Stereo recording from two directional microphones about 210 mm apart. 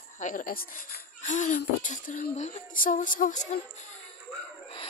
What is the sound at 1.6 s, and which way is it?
Female singing, 40° left (ahead or behind).